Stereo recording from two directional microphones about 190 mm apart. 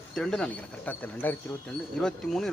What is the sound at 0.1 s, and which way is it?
Speech, 5° left (ahead or behind).